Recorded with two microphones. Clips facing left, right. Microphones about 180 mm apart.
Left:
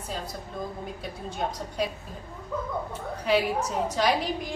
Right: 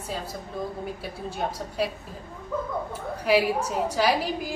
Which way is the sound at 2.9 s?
10° right (ahead or behind).